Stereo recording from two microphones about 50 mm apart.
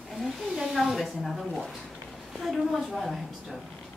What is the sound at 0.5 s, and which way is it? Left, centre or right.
Speech, centre.